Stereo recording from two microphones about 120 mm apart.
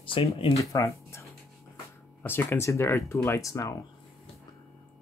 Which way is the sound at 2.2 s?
20° left (ahead or behind).